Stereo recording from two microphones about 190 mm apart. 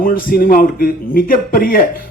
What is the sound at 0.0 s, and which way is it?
Speech, 50° left (ahead or behind).